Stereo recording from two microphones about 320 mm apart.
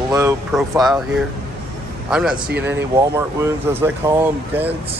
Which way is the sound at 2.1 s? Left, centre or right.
Centre.